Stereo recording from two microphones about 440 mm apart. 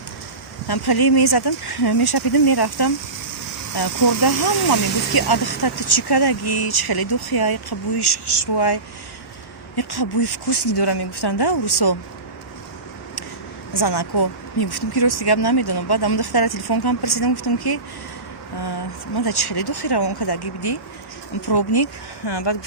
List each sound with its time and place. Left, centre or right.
0.7 s speech: left
13.7 s speech: left